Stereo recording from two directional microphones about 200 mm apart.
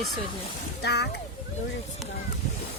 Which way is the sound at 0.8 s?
55° left (ahead or behind).